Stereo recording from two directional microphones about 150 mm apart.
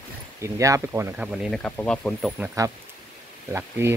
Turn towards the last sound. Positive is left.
turn(degrees=-15)  # may be behind; listen again after turning